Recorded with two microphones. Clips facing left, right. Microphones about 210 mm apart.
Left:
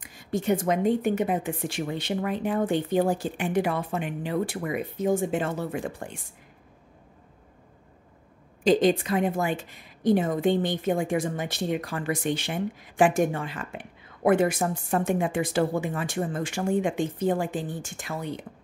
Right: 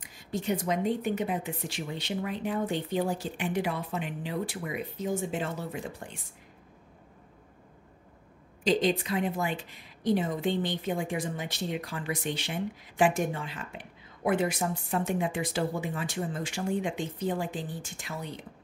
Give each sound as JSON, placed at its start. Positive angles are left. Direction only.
{"t": 0.3, "sound": "a woman's voice", "side_deg": 50}
{"t": 8.6, "sound": "a woman's voice", "side_deg": 50}